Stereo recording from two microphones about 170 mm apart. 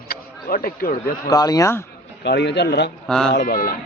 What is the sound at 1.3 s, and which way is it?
Speech, 20° left (ahead or behind).